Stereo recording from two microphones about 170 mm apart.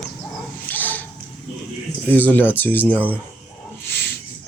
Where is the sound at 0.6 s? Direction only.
10° left (ahead or behind).